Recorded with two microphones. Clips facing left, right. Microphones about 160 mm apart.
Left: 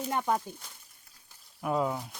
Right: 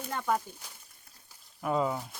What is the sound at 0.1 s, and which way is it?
Speech, 20° left (ahead or behind).